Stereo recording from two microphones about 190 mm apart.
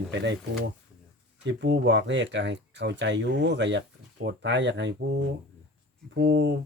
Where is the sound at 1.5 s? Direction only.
65° right (ahead or behind).